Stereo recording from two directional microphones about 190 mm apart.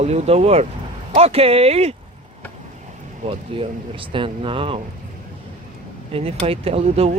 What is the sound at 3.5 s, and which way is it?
Speech, 25° right (ahead or behind).